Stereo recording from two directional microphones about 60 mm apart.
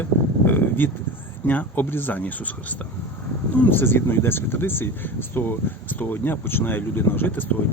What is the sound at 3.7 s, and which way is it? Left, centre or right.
Speech, left.